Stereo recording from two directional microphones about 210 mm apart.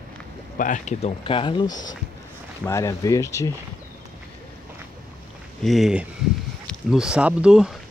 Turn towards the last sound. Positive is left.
turn(degrees=-5)  # may be behind; listen again after turning